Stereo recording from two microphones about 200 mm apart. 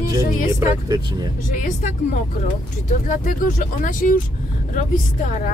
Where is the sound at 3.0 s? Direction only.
40° left (ahead or behind).